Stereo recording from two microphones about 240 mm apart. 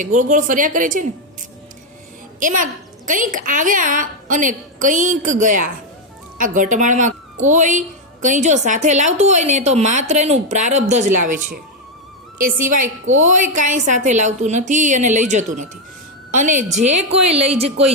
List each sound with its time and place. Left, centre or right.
0.0 s a woman's voice: right
2.4 s a woman's voice: right